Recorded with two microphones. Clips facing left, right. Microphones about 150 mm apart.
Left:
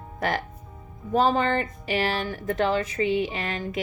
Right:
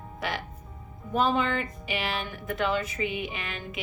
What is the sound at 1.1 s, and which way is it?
Speech, 35° left (ahead or behind).